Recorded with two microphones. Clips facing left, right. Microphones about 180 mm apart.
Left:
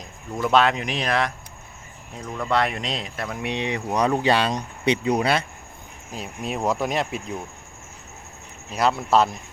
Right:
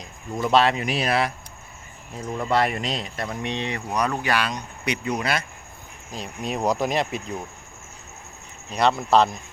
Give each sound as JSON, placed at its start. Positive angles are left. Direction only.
{"t": 0.4, "sound": "speech", "side_deg": 0}
{"t": 2.5, "sound": "speech", "side_deg": 0}
{"t": 6.1, "sound": "speech", "side_deg": 10}
{"t": 8.7, "sound": "speech", "side_deg": 5}